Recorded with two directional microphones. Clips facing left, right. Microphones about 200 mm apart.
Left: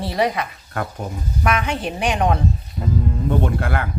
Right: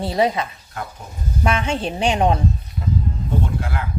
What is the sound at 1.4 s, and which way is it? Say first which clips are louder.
Speech: even; 25° right (ahead or behind).